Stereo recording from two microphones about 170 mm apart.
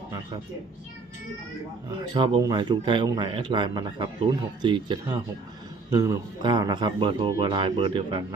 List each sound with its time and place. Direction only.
2.1 s speech: 30° right (ahead or behind)